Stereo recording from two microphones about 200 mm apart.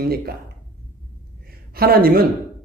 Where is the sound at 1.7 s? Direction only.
50° right (ahead or behind).